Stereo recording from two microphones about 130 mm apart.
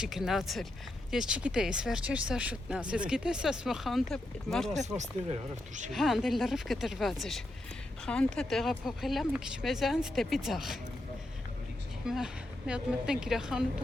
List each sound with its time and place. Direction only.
0.0 s speech: 5° right (ahead or behind)
4.9 s speech: 65° right (ahead or behind)
5.9 s speech: centre (ahead or behind)
12.0 s speech: 5° right (ahead or behind)